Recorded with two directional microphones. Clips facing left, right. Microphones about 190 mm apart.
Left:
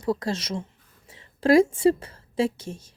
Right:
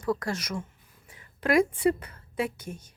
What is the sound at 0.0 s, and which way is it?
Speech, 25° left (ahead or behind).